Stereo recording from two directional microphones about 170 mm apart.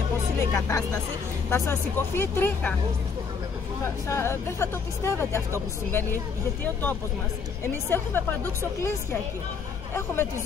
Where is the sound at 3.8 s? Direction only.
15° left (ahead or behind).